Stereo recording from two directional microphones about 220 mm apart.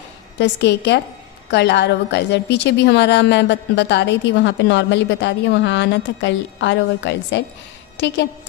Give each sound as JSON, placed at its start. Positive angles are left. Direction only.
{"t": 0.3, "sound": "a woman's voice", "side_deg": 50}